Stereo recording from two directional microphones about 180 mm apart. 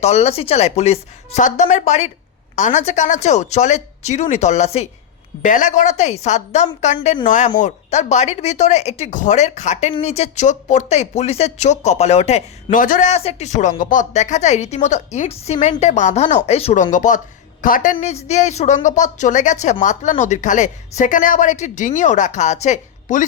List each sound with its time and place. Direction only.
0.0 s speech: 40° left (ahead or behind)
12.7 s speech: 50° left (ahead or behind)
17.9 s speech: 35° left (ahead or behind)